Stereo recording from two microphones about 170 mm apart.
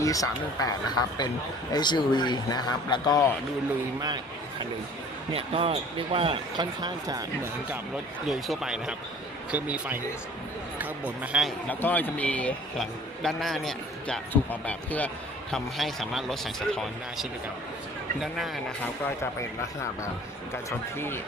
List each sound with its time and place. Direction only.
0.0 s a man's voice: 20° left (ahead or behind)
5.3 s speech: 35° right (ahead or behind)
8.3 s speech: centre (ahead or behind)
11.7 s speech: 10° left (ahead or behind)
19.0 s speech: 15° left (ahead or behind)
20.7 s speech: 15° left (ahead or behind)